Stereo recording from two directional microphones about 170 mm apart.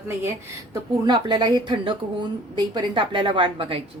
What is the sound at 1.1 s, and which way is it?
A woman's voice, 25° right (ahead or behind).